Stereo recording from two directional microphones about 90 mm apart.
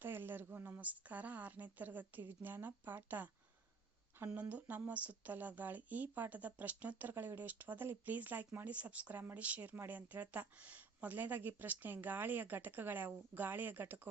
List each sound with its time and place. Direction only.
0.0 s speech: 25° right (ahead or behind)
4.3 s speech: 15° right (ahead or behind)